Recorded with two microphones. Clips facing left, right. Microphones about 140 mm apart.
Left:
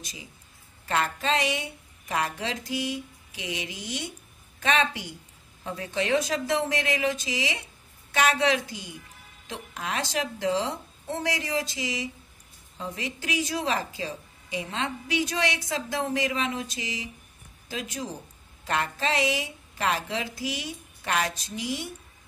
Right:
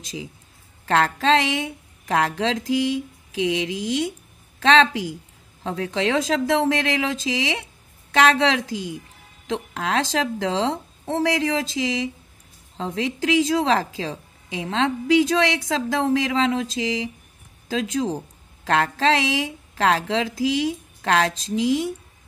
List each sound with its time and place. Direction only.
0.8 s a woman's voice: 90° right